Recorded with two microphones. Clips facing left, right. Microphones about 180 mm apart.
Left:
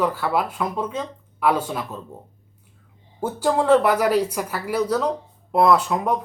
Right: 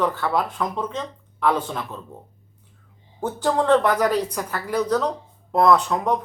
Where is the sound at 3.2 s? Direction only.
10° left (ahead or behind).